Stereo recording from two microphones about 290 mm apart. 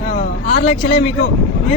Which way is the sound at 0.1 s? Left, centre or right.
Left.